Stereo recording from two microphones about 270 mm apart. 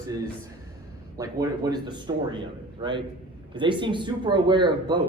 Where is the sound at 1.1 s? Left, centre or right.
Centre.